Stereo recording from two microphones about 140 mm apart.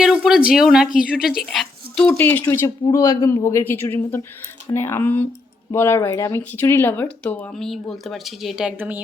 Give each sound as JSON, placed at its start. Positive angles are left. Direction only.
{"t": 0.0, "sound": "speech", "side_deg": -5}
{"t": 1.4, "sound": "a sound", "side_deg": 0}
{"t": 2.1, "sound": "speech", "side_deg": 15}
{"t": 7.5, "sound": "speech", "side_deg": 5}